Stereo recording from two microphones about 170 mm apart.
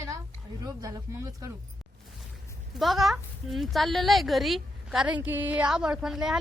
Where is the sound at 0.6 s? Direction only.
20° right (ahead or behind).